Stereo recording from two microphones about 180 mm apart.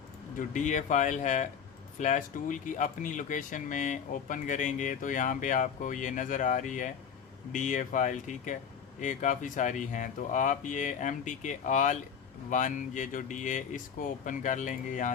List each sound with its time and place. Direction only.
0.3 s speech: 45° left (ahead or behind)